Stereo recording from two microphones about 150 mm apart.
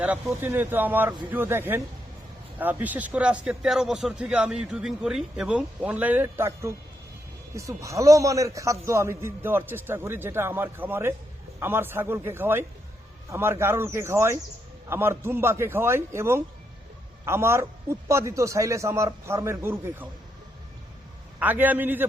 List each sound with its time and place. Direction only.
0.0 s a man's voice: 10° right (ahead or behind)
21.3 s a man's voice: 10° right (ahead or behind)